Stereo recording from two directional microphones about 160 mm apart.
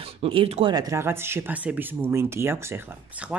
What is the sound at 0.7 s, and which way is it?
Speech, 20° right (ahead or behind).